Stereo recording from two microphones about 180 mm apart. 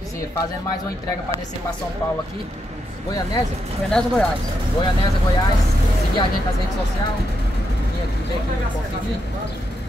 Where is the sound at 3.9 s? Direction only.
5° left (ahead or behind).